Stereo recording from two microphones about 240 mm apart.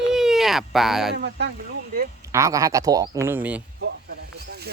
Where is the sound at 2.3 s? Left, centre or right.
Centre.